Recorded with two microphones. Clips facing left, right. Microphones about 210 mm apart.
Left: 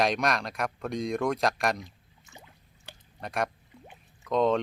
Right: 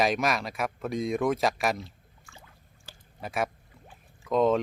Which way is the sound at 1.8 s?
20° left (ahead or behind).